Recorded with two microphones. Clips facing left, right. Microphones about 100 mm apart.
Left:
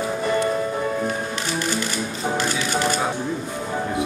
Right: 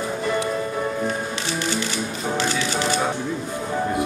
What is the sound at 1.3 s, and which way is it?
Music, 45° left (ahead or behind).